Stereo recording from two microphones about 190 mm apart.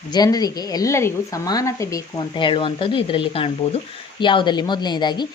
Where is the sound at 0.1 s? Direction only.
20° left (ahead or behind).